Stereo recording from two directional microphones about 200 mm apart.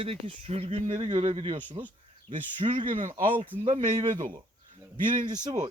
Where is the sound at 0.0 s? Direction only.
30° right (ahead or behind).